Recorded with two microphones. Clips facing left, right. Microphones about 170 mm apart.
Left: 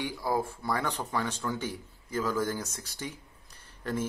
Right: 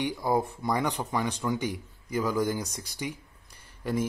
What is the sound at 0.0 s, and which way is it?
Speech, 20° right (ahead or behind).